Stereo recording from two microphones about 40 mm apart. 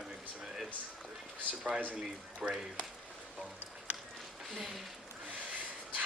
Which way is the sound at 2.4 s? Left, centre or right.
Right.